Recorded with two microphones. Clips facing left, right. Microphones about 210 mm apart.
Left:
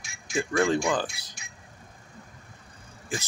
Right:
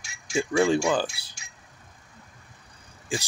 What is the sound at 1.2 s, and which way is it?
Speech, 30° right (ahead or behind).